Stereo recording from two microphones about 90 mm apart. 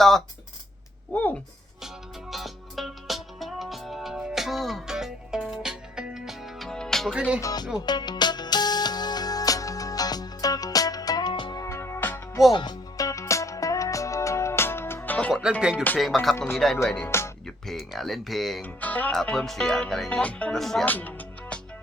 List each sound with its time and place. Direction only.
1.1 s speech: 15° left (ahead or behind)
2.3 s music: centre (ahead or behind)
7.1 s music: 10° right (ahead or behind)
7.4 s music: 50° left (ahead or behind)
11.6 s music: 30° left (ahead or behind)
12.5 s music: 50° left (ahead or behind)
13.1 s music: 35° left (ahead or behind); by 15.3 s 20° left (ahead or behind)
15.3 s music: 5° right (ahead or behind)
17.1 s music: 30° left (ahead or behind)
17.4 s speech: centre (ahead or behind)
18.6 s speech: 20° left (ahead or behind)
19.1 s speech: 10° left (ahead or behind)
20.6 s music: 5° left (ahead or behind)
20.8 s music: 20° left (ahead or behind)